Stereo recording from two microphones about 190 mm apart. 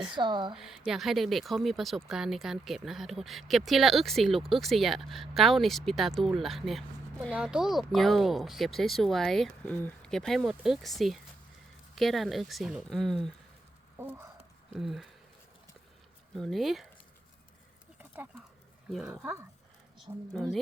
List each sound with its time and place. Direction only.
0.2 s a woman's voice: 25° right (ahead or behind)
0.5 s speech: centre (ahead or behind)
14.0 s speech: 10° right (ahead or behind)
14.7 s speech: centre (ahead or behind)
16.3 s speech: centre (ahead or behind)
18.1 s speech: 10° right (ahead or behind)
19.1 s speech: 15° right (ahead or behind)
20.0 s speech: centre (ahead or behind)